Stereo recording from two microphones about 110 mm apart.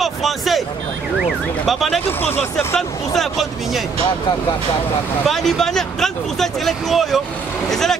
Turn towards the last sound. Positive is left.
turn(degrees=5)  # may be behind; listen again after turning